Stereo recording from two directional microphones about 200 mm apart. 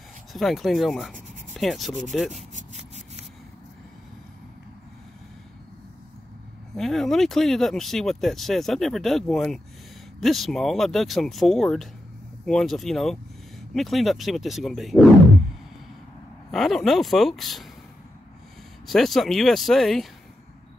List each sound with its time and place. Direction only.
0.3 s rub: centre (ahead or behind)
2.1 s speech: centre (ahead or behind)
2.7 s rub: 35° right (ahead or behind)
6.7 s speech: centre (ahead or behind)
16.5 s speech: centre (ahead or behind)
18.9 s speech: centre (ahead or behind)